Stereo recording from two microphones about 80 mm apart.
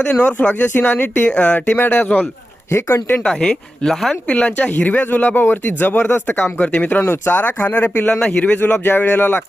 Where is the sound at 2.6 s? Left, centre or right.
Left.